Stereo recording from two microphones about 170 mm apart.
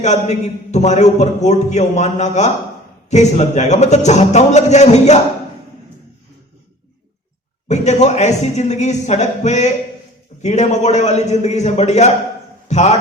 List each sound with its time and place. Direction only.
0.0 s a man's voice: 40° left (ahead or behind)
7.7 s a man's voice: 40° left (ahead or behind)